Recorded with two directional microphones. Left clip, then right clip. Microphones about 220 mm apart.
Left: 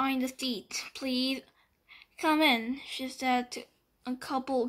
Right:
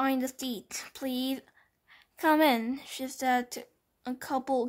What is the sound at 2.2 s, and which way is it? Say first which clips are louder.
Speech: right 2 dB; 40° right (ahead or behind).